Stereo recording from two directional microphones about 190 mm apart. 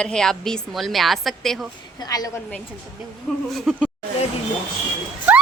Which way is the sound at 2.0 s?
20° left (ahead or behind).